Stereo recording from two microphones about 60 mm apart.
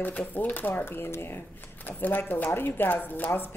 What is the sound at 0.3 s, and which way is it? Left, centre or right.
A woman's voice, left.